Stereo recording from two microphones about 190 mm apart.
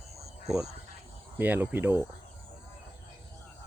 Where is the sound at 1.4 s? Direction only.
10° right (ahead or behind).